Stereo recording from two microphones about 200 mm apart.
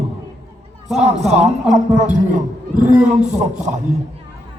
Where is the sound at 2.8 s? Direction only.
5° right (ahead or behind).